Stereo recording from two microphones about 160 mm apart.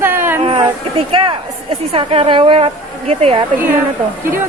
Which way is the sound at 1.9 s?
40° right (ahead or behind).